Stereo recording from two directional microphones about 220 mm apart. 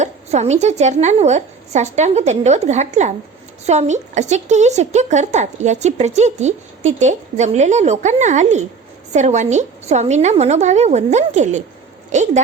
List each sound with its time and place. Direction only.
0.0 s a woman's voice: 30° right (ahead or behind)